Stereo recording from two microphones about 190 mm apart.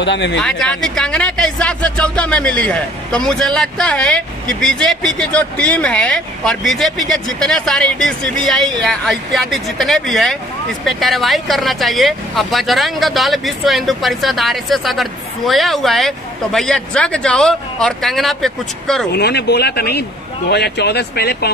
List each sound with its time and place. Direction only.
0.0 s speech: 70° left (ahead or behind)
0.4 s speech: 5° left (ahead or behind)
19.1 s a man's voice: 60° left (ahead or behind)